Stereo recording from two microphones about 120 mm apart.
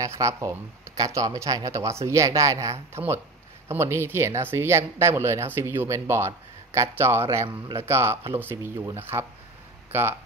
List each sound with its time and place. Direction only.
0.0 s speech: 25° right (ahead or behind)